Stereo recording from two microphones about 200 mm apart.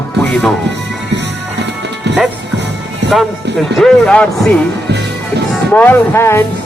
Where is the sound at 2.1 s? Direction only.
60° right (ahead or behind).